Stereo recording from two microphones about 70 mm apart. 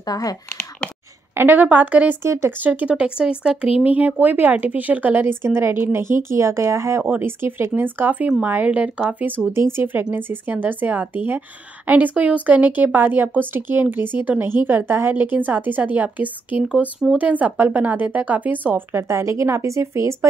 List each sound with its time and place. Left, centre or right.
0.0 s speech: left
1.3 s a woman's voice: right
2.2 s speech: right
2.6 s speech: right
3.8 s speech: right
7.1 s a woman's voice: right
9.5 s speech: right
10.1 s a woman's voice: right